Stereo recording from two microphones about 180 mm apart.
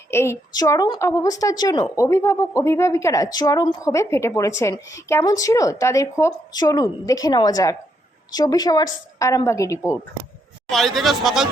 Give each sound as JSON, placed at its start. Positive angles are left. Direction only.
{"t": 0.1, "sound": "a woman's voice", "side_deg": 15}
{"t": 10.7, "sound": "speech", "side_deg": 0}